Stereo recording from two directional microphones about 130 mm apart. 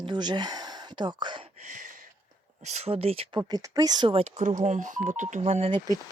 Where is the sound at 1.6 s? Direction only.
80° right.